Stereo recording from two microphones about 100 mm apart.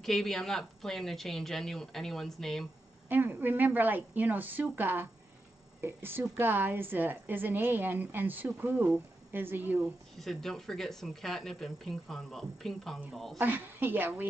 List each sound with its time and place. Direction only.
0.0 s speech: centre (ahead or behind)
3.1 s a woman's voice: 20° right (ahead or behind)
10.1 s speech: 5° left (ahead or behind)
13.4 s a woman's voice: 20° right (ahead or behind)